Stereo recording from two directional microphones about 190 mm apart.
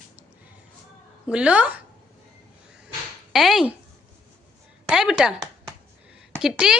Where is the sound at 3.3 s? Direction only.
Centre (ahead or behind).